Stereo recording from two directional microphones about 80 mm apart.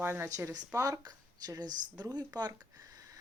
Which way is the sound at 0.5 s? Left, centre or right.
Right.